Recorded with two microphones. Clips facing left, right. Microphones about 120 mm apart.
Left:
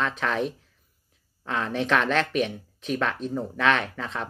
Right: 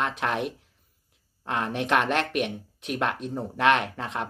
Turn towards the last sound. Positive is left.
turn(degrees=-15)  # may be behind; listen again after turning